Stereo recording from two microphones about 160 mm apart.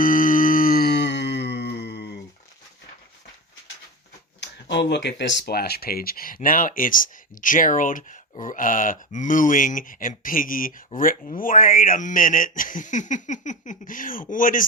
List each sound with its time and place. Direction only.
0.0 s music: 60° left (ahead or behind); by 2.1 s 90° left
4.4 s speech: 90° left; by 14.6 s 55° left (ahead or behind)